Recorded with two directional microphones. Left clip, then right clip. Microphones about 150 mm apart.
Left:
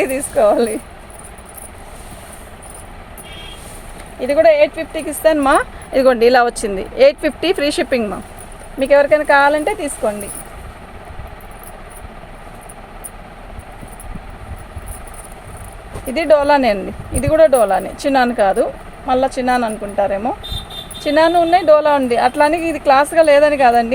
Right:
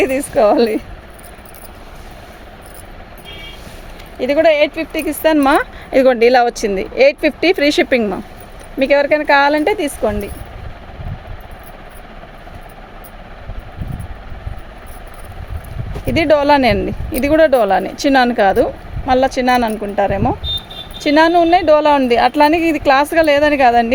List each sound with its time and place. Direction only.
0.0 s speech: 45° right (ahead or behind)
4.2 s speech: 55° right (ahead or behind)
8.8 s speech: 55° right (ahead or behind)
16.0 s speech: 70° right (ahead or behind)